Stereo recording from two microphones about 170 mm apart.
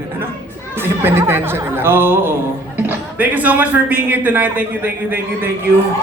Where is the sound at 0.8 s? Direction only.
15° right (ahead or behind).